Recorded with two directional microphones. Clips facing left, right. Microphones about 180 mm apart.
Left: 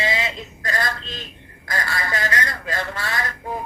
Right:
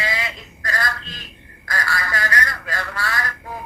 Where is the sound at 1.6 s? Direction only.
25° left (ahead or behind).